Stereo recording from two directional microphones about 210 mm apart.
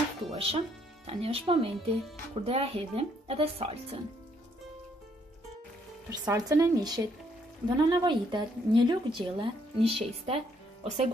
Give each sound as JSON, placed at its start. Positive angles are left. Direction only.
{"t": 0.3, "sound": "speech", "side_deg": -25}
{"t": 6.0, "sound": "speech", "side_deg": -15}